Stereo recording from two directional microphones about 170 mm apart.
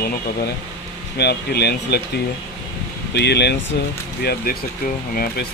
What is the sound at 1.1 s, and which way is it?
Speech, 75° left (ahead or behind).